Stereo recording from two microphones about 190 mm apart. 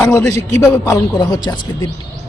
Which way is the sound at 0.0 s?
15° left (ahead or behind).